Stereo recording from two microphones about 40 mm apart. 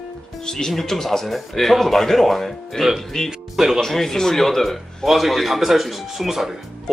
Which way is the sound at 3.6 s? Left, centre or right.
Centre.